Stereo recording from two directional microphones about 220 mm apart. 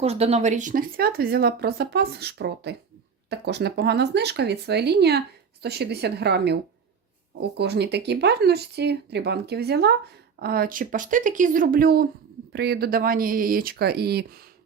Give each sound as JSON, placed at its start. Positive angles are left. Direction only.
{"t": 0.0, "sound": "speech", "side_deg": -30}